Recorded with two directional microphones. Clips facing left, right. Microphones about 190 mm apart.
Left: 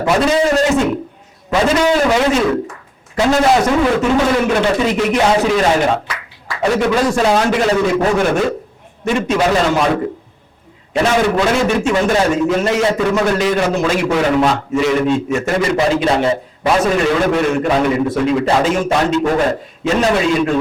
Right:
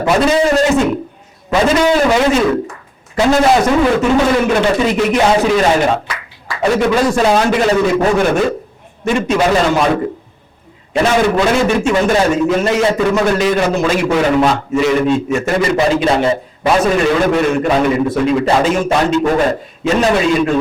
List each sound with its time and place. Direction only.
0.0 s a man's voice: 15° right (ahead or behind)